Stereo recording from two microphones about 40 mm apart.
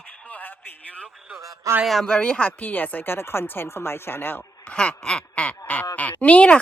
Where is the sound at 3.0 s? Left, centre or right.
Left.